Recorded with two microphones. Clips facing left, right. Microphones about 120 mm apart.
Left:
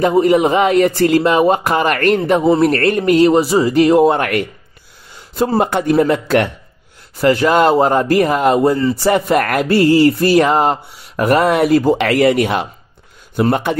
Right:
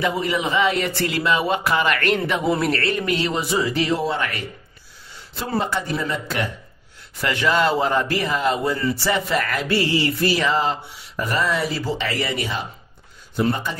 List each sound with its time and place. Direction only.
0.0 s speech: 45° left (ahead or behind)
2.7 s speech: 45° left (ahead or behind)
5.6 s speech: 60° left (ahead or behind); by 6.5 s 75° left (ahead or behind)
7.2 s speech: 40° left (ahead or behind); by 13.7 s 65° left (ahead or behind)